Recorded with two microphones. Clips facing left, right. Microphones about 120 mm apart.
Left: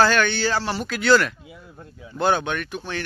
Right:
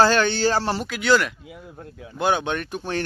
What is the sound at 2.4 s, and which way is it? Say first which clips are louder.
Speech: right 1 dB; 30° right (ahead or behind).